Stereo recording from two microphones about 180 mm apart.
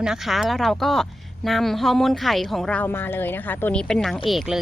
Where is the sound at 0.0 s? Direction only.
Centre (ahead or behind).